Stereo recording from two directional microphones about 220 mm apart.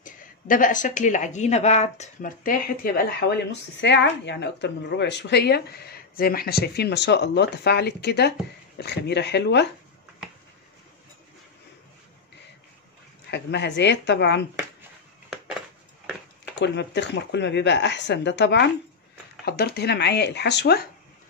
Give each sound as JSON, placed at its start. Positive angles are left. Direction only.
{"t": 0.0, "sound": "speech", "side_deg": 35}
{"t": 13.3, "sound": "speech", "side_deg": 50}
{"t": 16.5, "sound": "speech", "side_deg": 50}